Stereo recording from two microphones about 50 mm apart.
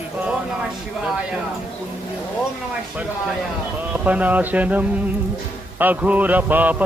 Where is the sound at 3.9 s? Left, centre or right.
Right.